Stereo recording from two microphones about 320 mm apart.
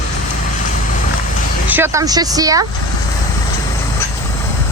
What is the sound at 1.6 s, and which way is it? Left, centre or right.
Speech, centre.